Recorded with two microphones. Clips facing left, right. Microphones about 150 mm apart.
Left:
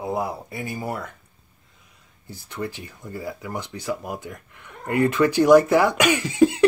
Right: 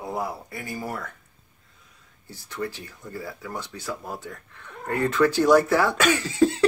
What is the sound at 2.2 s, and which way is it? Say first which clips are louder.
Speech: left 1 dB; 20° left (ahead or behind).